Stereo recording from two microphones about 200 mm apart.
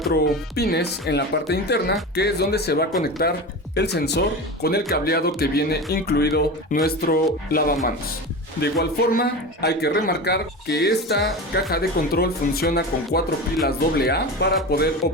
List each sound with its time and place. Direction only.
0.1 s speech: 50° left (ahead or behind)